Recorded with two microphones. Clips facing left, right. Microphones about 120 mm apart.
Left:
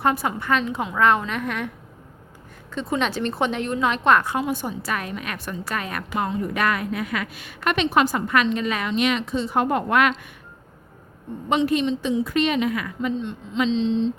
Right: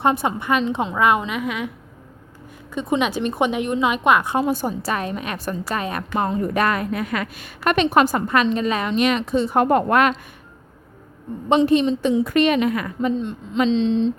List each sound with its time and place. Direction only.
0.0 s a woman's voice: 25° right (ahead or behind); by 1.7 s 10° right (ahead or behind)
2.7 s a woman's voice: 15° right (ahead or behind)
4.4 s a woman's voice: 35° right (ahead or behind)
6.1 s a woman's voice: 40° right (ahead or behind)
8.3 s a woman's voice: 35° right (ahead or behind)
11.4 s a woman's voice: 30° right (ahead or behind)
12.0 s a woman's voice: 55° right (ahead or behind)